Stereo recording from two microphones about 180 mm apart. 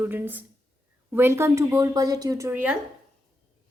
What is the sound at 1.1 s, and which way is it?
Speech, 15° right (ahead or behind).